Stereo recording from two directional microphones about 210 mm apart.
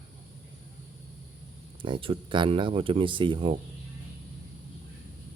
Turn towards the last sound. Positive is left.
turn(degrees=-25)  # may be behind; listen again after turning